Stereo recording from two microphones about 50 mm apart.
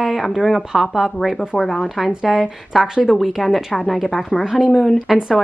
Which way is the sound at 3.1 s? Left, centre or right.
Centre.